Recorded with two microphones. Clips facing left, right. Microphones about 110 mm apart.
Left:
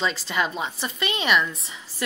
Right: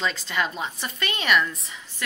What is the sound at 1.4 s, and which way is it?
Speech, centre (ahead or behind).